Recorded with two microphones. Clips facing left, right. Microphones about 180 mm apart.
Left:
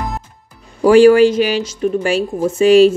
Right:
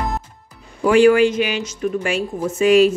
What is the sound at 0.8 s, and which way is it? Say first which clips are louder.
A woman's voice: left 5 dB; 35° left (ahead or behind).